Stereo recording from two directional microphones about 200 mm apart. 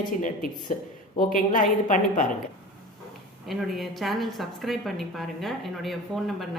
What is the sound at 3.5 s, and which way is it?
A woman's voice, centre (ahead or behind).